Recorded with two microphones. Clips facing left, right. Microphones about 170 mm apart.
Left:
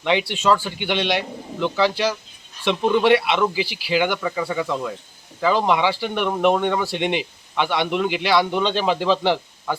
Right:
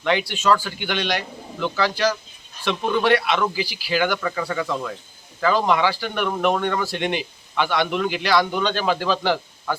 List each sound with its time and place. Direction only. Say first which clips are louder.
0.0 s a man's voice: left 1 dB; 20° left (ahead or behind)
4.3 s a man's voice: left 1 dB; 5° left (ahead or behind)